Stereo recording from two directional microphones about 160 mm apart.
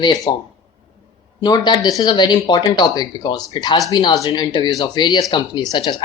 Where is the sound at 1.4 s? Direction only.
30° left (ahead or behind).